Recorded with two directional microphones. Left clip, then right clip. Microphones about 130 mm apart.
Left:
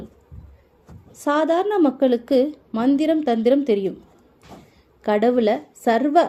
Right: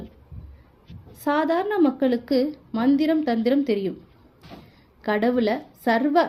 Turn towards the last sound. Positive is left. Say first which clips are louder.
# left 3 dB
turn(degrees=50)  # may be behind; listen again after turning